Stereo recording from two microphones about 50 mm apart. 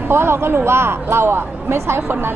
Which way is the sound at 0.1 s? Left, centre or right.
Right.